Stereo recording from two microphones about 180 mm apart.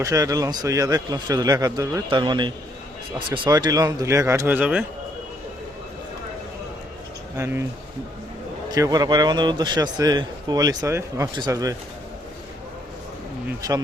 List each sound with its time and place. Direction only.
0.0 s a man's voice: 20° right (ahead or behind)
7.3 s speech: 15° right (ahead or behind)
8.7 s a man's voice: 20° right (ahead or behind)
13.6 s a man's voice: 20° right (ahead or behind)